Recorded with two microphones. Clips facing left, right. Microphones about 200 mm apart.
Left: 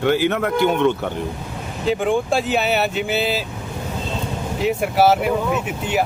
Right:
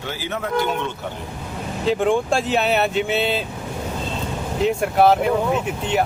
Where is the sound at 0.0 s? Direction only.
65° left (ahead or behind).